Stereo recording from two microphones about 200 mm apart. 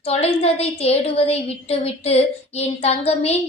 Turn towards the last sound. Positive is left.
turn(degrees=30)  # may be behind; listen again after turning